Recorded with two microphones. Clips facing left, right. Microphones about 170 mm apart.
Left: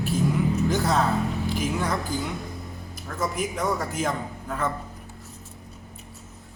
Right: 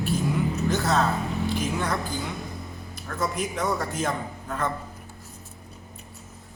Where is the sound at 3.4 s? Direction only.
10° left (ahead or behind).